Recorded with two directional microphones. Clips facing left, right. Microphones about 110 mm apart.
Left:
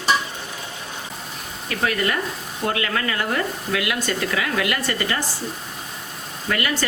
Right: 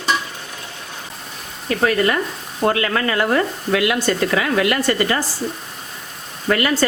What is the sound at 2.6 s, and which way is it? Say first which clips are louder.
Speech: right 5 dB; 40° right (ahead or behind).